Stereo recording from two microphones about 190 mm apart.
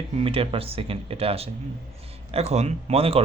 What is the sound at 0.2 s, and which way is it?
Speech, 30° right (ahead or behind).